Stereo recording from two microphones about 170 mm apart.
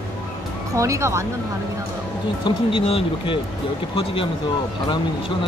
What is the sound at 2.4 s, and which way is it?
Speech, 30° left (ahead or behind).